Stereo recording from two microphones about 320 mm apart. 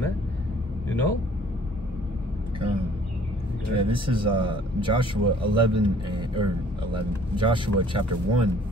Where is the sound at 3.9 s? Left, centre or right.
Centre.